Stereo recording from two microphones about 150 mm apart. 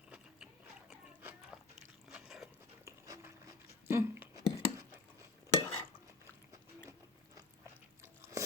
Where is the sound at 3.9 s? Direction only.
15° right (ahead or behind).